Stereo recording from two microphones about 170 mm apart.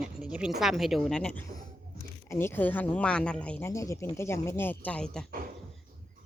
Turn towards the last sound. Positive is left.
turn(degrees=5)  # may be behind; listen again after turning